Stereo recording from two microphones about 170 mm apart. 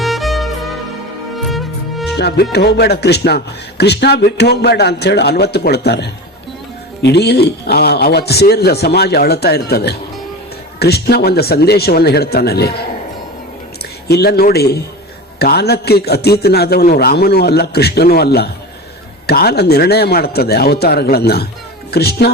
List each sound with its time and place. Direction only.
0.0 s music: centre (ahead or behind)
2.1 s speech: 70° left (ahead or behind)
14.1 s speech: 70° left (ahead or behind)